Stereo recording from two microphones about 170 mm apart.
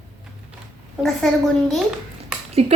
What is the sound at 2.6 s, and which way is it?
Speech, 35° right (ahead or behind).